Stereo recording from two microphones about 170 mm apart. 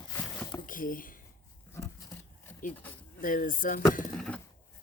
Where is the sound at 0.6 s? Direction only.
55° left (ahead or behind).